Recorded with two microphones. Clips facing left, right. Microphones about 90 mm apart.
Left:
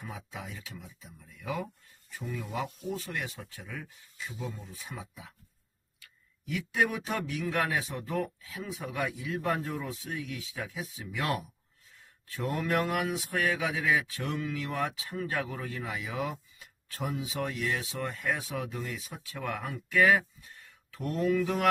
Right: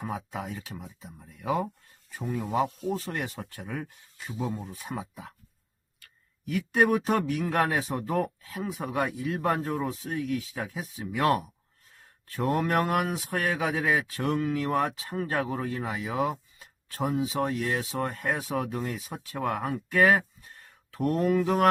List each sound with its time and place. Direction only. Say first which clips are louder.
0.3 s speech: right 7 dB; 45° right (ahead or behind)
4.4 s speech: right 8 dB; 30° right (ahead or behind)
4.6 s speech: right 7 dB; 45° right (ahead or behind)
6.5 s speech: right 6 dB; 45° right (ahead or behind)